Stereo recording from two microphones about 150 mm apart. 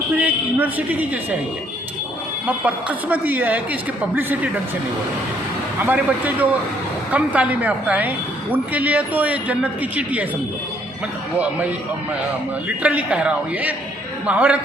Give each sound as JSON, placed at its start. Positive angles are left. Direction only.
{"t": 0.2, "sound": "a woman's voice", "side_deg": -10}
{"t": 2.5, "sound": "a woman's voice", "side_deg": -10}
{"t": 5.8, "sound": "a woman's voice", "side_deg": -10}
{"t": 12.6, "sound": "a woman's voice", "side_deg": -10}